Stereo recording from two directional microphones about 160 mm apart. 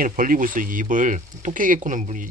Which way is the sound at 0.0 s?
60° right (ahead or behind).